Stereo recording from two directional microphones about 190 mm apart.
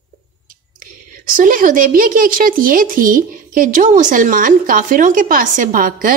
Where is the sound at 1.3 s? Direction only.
45° right (ahead or behind).